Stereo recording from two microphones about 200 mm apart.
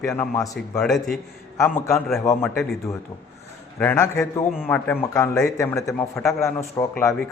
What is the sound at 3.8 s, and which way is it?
A man's voice, 10° left (ahead or behind).